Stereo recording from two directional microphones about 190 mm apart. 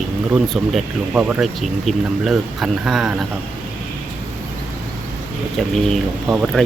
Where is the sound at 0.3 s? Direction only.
Centre (ahead or behind).